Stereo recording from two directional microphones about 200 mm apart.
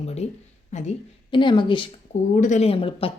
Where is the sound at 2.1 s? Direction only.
40° left (ahead or behind).